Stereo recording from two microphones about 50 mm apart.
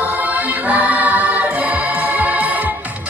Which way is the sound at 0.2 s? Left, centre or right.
Right.